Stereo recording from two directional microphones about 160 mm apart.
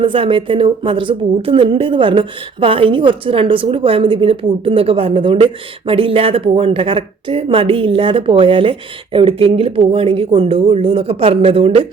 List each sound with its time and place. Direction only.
0.0 s speech: 35° right (ahead or behind)